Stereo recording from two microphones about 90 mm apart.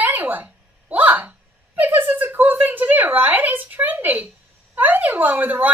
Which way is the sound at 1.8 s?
20° right (ahead or behind).